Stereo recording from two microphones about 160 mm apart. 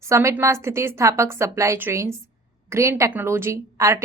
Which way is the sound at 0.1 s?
15° right (ahead or behind).